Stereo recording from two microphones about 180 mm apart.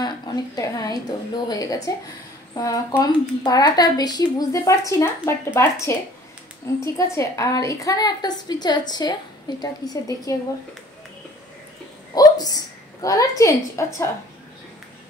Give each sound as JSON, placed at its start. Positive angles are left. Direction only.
{"t": 0.6, "sound": "a woman's voice", "side_deg": 20}
{"t": 12.1, "sound": "a woman's voice", "side_deg": 20}